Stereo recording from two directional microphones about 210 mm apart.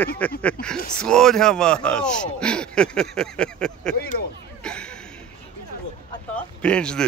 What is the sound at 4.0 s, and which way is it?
Speech, 45° left (ahead or behind).